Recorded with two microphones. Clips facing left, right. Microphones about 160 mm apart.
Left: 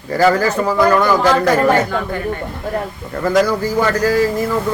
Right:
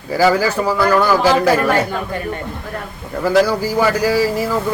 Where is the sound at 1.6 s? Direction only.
25° left (ahead or behind).